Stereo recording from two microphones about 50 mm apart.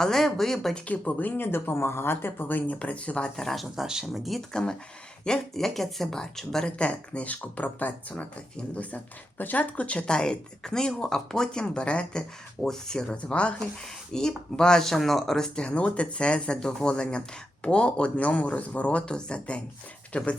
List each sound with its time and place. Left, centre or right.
0.0 s speech: centre
0.9 s speech: left
1.4 s speech: left
3.4 s speech: centre
4.5 s speech: centre
14.1 s speech: centre
15.5 s speech: left